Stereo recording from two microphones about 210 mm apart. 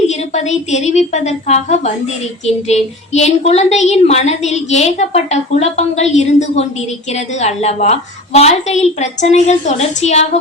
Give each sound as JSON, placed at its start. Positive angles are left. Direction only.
{"t": 0.1, "sound": "a woman's voice", "side_deg": 35}